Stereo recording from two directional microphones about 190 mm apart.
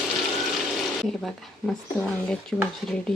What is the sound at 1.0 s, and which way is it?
Speech, centre (ahead or behind).